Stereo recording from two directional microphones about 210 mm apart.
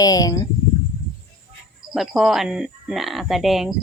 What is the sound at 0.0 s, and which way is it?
Speech, 15° left (ahead or behind).